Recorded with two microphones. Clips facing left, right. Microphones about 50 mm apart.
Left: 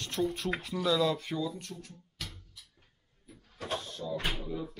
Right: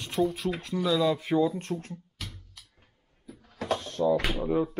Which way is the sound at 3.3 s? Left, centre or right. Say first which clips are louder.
Right 9 dB; right.